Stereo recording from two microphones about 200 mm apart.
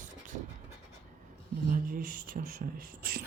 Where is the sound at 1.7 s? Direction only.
45° right (ahead or behind).